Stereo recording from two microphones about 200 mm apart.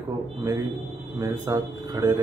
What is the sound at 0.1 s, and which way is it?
A man's voice, 15° right (ahead or behind).